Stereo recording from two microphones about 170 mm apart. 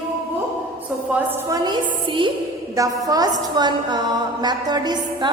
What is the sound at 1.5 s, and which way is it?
Speech, 20° right (ahead or behind).